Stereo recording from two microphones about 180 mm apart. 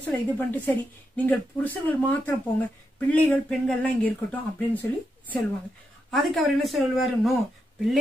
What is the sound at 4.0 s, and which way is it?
Speech, 10° left (ahead or behind).